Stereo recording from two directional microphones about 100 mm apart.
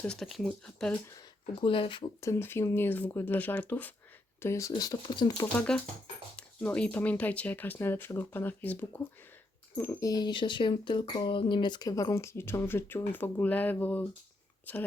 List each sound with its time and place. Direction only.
0.1 s speech: centre (ahead or behind)
1.6 s speech: 60° left (ahead or behind)
2.2 s speech: 30° left (ahead or behind)
4.4 s speech: 30° left (ahead or behind)
4.7 s speech: 45° left (ahead or behind)
5.5 s speech: 10° left (ahead or behind)
10.0 s speech: 40° left (ahead or behind); by 14.8 s 15° left (ahead or behind)